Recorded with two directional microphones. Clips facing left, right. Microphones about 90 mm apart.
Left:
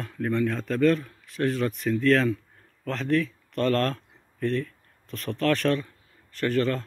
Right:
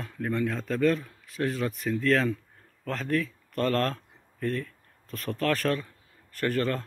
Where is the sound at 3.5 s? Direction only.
25° right (ahead or behind).